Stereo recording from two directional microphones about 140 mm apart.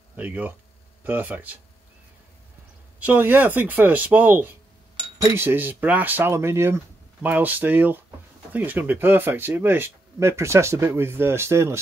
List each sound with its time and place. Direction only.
0.1 s speech: 10° right (ahead or behind)
3.0 s speech: 15° right (ahead or behind)